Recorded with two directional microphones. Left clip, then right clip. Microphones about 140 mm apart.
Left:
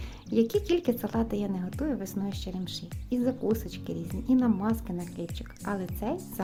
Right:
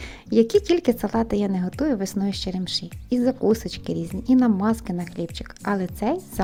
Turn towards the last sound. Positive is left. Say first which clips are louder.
# right 8 dB
turn(degrees=-35)  # may be behind; listen again after turning